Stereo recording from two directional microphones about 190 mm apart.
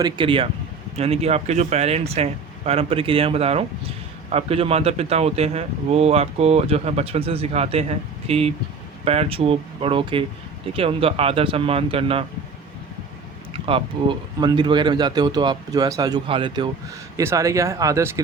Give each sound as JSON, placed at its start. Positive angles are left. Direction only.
{"t": 0.0, "sound": "speech", "side_deg": -25}
{"t": 13.5, "sound": "speech", "side_deg": -30}
{"t": 17.2, "sound": "speech", "side_deg": -15}